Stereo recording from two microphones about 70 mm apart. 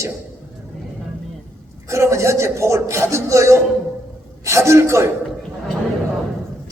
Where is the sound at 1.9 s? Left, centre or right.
Right.